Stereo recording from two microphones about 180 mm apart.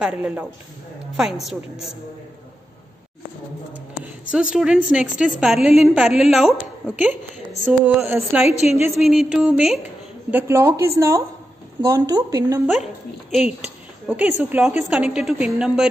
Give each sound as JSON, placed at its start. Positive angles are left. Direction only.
{"t": 0.0, "sound": "a woman's voice", "side_deg": -5}
{"t": 4.0, "sound": "a sound", "side_deg": -5}
{"t": 4.8, "sound": "a woman's voice", "side_deg": -5}
{"t": 7.6, "sound": "a woman's voice", "side_deg": -10}
{"t": 8.5, "sound": "a woman's voice", "side_deg": 35}
{"t": 8.9, "sound": "a woman's voice", "side_deg": 0}
{"t": 10.3, "sound": "a woman's voice", "side_deg": -15}
{"t": 12.8, "sound": "a woman's voice", "side_deg": -5}